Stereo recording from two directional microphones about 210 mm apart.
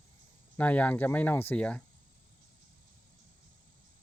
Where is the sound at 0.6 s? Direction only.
5° left (ahead or behind).